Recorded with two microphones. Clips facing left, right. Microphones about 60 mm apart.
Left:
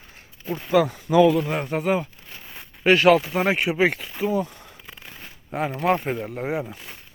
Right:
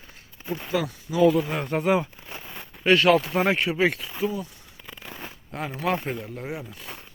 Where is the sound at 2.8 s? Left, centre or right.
Left.